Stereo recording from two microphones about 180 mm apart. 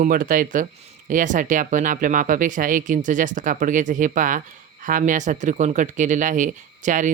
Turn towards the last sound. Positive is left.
turn(degrees=-45)  # may be behind; listen again after turning